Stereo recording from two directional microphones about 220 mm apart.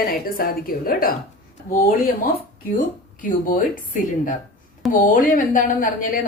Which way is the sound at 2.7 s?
35° left (ahead or behind).